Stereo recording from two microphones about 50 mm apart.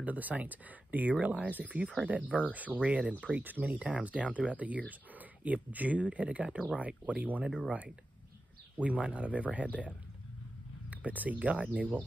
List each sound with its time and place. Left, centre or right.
0.0 s speech: right
8.7 s speech: right
10.9 s speech: right